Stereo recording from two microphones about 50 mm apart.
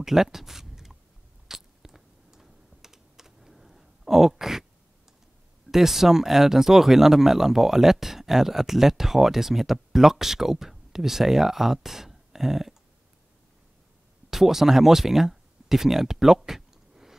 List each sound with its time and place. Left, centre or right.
0.0 s speech: centre
1.5 s typing: centre
5.7 s speech: centre
14.3 s speech: centre